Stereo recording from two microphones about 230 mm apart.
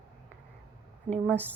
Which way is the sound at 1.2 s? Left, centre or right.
Centre.